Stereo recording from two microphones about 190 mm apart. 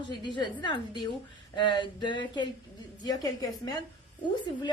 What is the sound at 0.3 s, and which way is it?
A woman's voice, 25° left (ahead or behind).